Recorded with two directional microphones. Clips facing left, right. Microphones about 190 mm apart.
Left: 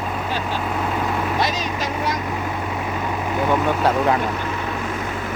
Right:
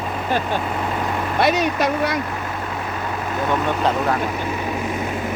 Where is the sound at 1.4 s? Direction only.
65° right (ahead or behind).